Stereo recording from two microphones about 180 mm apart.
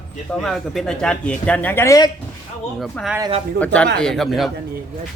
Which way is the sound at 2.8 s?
Centre (ahead or behind).